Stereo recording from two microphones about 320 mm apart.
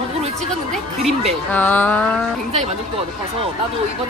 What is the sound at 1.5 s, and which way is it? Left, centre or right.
Speech, centre.